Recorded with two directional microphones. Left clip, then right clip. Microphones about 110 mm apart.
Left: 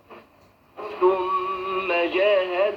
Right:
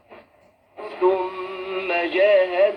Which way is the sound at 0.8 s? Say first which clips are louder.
Even; 35° right (ahead or behind).